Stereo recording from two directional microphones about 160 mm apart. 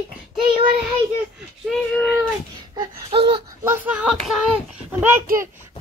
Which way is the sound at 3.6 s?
10° right (ahead or behind).